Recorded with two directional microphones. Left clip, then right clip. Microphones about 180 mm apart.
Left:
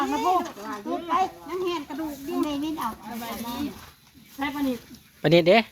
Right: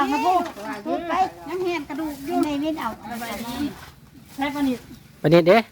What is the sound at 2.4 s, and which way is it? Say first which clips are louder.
Speech: right 3 dB; 20° right (ahead or behind).